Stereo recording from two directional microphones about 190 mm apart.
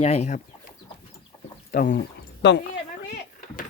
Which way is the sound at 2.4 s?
65° left (ahead or behind).